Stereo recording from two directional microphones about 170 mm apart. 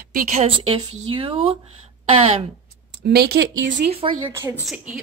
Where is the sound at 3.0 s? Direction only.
70° right (ahead or behind); by 3.8 s 90° right.